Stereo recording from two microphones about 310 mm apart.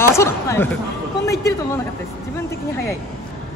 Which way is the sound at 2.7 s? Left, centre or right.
Centre.